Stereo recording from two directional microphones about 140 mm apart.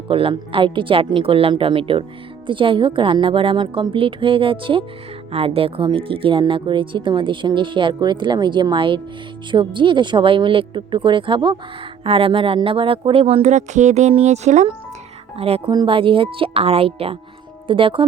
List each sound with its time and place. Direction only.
0.1 s speech: 40° right (ahead or behind); by 14.7 s 55° right (ahead or behind)
15.4 s speech: 45° right (ahead or behind)
15.7 s speech: 35° right (ahead or behind)